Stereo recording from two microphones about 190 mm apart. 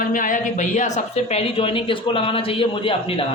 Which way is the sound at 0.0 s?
45° left (ahead or behind).